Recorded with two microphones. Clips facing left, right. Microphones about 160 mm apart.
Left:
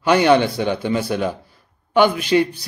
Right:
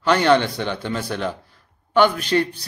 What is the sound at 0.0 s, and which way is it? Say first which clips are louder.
A man's voice: left 2 dB; 15° left (ahead or behind).